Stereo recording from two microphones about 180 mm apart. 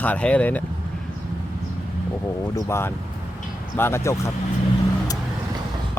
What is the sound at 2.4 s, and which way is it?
Speech, 15° left (ahead or behind).